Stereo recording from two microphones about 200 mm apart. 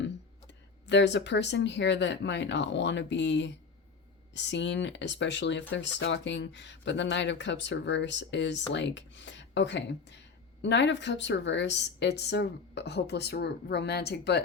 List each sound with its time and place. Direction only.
0.9 s speech: 60° left (ahead or behind)